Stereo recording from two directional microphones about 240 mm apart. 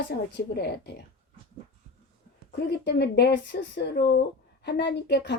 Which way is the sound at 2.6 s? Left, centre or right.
Left.